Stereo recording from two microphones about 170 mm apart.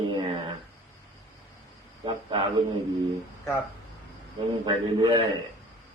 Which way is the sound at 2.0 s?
30° right (ahead or behind).